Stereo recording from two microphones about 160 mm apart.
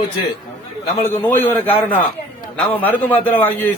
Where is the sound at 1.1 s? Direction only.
15° left (ahead or behind).